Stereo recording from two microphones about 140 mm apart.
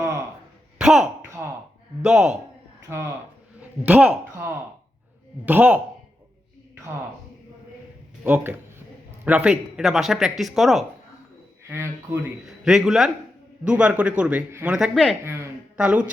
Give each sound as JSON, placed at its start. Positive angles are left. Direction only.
{"t": 0.0, "sound": "a sound", "side_deg": -20}
{"t": 0.8, "sound": "a sound", "side_deg": -5}
{"t": 2.0, "sound": "a man's voice", "side_deg": -5}
{"t": 8.2, "sound": "a man's voice", "side_deg": -15}
{"t": 11.7, "sound": "a man's voice", "side_deg": -15}
{"t": 12.5, "sound": "a man's voice", "side_deg": -5}
{"t": 15.2, "sound": "a man's voice", "side_deg": -20}